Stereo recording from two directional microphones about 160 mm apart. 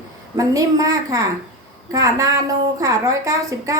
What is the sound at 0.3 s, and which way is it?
A woman's voice, 20° right (ahead or behind).